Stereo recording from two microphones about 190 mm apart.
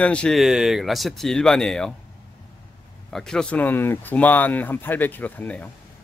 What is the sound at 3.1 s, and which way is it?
Speech, centre (ahead or behind).